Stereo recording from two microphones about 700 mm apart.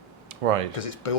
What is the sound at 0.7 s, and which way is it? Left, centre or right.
Speech, left.